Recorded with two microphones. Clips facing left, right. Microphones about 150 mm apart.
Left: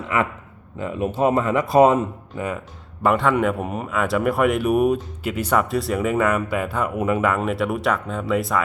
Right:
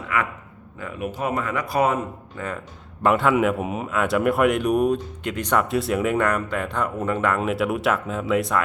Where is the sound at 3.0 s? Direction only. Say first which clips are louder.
Even; centre (ahead or behind).